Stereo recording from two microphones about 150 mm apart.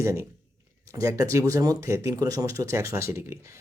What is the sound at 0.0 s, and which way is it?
Speech, 20° right (ahead or behind).